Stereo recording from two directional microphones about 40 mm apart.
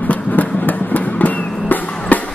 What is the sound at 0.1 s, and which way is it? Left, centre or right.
Music, left.